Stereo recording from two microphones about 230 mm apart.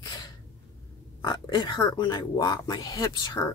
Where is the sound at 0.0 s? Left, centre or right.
Centre.